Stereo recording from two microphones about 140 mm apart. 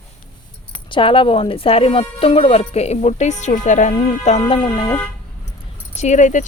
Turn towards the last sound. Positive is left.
turn(degrees=60)  # may be behind; listen again after turning